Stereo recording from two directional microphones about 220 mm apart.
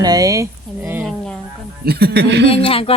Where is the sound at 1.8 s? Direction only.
45° right (ahead or behind).